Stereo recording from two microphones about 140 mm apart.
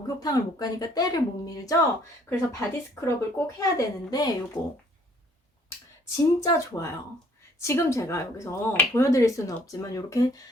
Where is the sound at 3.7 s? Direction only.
25° left (ahead or behind).